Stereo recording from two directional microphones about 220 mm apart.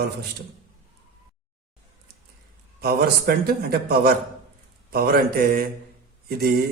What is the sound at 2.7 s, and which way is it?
A man's voice, 45° right (ahead or behind).